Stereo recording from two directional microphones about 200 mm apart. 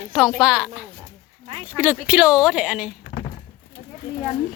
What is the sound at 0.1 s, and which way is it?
Speech, 5° right (ahead or behind).